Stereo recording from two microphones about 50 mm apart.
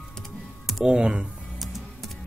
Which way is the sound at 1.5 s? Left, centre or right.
Centre.